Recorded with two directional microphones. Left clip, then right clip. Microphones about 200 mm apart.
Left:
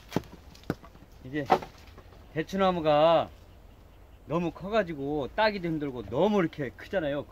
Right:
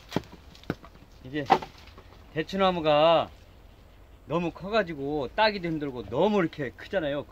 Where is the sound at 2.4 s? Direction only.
5° right (ahead or behind).